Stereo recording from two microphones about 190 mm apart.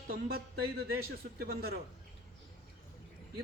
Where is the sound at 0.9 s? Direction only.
55° right (ahead or behind).